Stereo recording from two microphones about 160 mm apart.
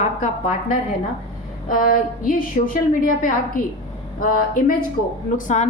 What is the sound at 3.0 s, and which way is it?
A woman's voice, 60° left (ahead or behind).